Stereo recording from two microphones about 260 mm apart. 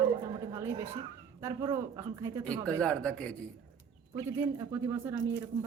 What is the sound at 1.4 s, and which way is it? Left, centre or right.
Speech, centre.